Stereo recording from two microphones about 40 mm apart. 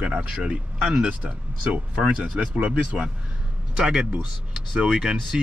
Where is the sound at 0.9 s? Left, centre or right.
Right.